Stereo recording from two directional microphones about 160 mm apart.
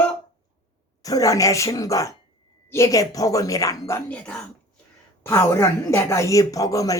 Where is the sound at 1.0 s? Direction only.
20° left (ahead or behind).